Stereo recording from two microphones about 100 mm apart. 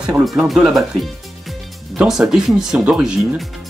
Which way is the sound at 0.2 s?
Centre (ahead or behind).